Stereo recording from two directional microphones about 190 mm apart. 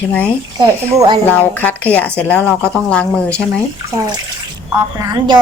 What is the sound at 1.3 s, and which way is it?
Speech, 10° left (ahead or behind).